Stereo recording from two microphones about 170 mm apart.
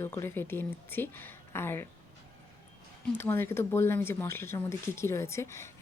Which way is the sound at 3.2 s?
15° left (ahead or behind).